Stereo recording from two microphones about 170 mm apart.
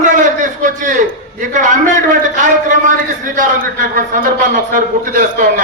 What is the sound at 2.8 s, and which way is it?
A man's voice, 50° right (ahead or behind).